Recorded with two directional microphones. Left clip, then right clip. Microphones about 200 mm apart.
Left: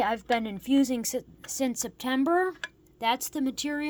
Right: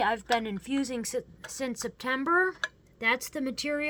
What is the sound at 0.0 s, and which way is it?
Speech, 30° left (ahead or behind).